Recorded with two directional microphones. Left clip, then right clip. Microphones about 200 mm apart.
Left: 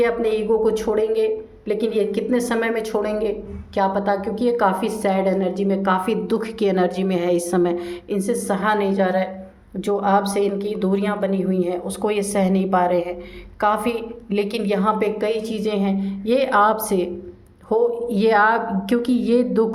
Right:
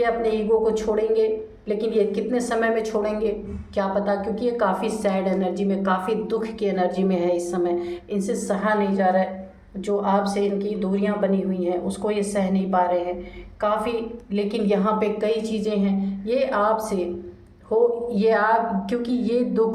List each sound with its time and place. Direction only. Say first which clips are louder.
0.0 s a woman's voice: left 2 dB; 40° left (ahead or behind)